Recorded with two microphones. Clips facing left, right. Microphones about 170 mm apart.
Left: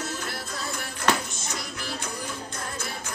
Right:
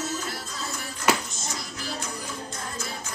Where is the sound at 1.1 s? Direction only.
10° right (ahead or behind).